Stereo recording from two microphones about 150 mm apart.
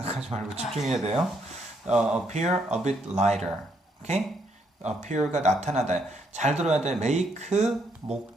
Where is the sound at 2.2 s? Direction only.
50° right (ahead or behind).